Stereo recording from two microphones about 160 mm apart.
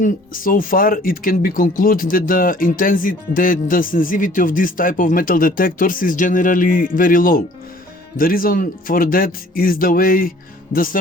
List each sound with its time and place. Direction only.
0.0 s speech: 60° left (ahead or behind)